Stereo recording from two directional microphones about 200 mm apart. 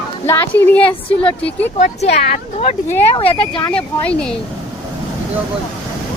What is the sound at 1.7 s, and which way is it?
Speech, 35° left (ahead or behind).